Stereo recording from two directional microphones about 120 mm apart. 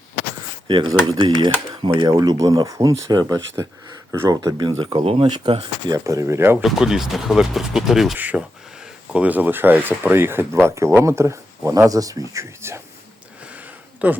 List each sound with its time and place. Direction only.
0.7 s speech: 40° right (ahead or behind)
2.0 s speech: 30° right (ahead or behind)
4.4 s speech: 35° right (ahead or behind)
5.0 s speech: 55° right (ahead or behind)
5.9 s speech: 25° right (ahead or behind)
6.6 s speech: centre (ahead or behind); by 12.8 s 25° right (ahead or behind)
13.5 s a sound: 15° right (ahead or behind)